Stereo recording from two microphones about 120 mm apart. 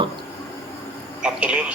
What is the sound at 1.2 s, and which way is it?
Telephone, 10° right (ahead or behind).